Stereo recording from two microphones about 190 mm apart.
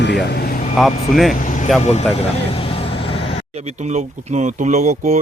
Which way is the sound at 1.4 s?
40° left (ahead or behind).